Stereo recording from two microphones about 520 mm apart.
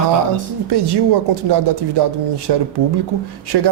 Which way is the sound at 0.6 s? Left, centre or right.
Right.